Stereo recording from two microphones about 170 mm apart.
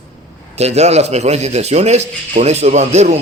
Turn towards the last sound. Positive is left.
turn(degrees=-40)  # may be behind; listen again after turning